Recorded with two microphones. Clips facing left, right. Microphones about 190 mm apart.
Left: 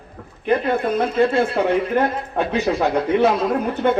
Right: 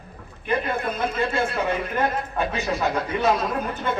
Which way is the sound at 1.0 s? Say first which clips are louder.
Left 8 dB; 65° left (ahead or behind).